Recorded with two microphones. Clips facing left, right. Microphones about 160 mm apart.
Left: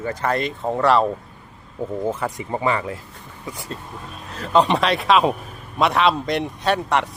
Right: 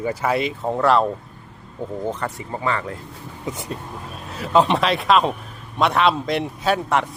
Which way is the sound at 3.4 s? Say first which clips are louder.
Right 3 dB; 20° right (ahead or behind).